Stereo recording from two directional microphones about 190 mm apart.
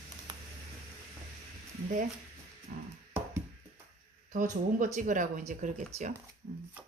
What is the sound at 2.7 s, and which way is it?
Music, 45° right (ahead or behind).